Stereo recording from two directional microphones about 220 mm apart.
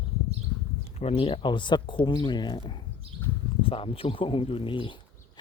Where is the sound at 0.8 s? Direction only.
30° left (ahead or behind).